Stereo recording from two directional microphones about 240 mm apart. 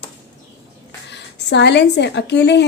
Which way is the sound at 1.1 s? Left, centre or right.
Left.